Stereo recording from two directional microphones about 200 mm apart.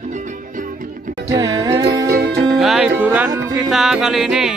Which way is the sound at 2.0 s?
55° right (ahead or behind).